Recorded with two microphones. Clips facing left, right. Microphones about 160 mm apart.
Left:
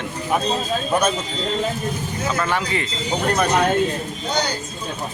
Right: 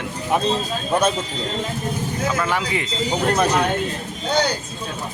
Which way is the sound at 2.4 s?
10° right (ahead or behind).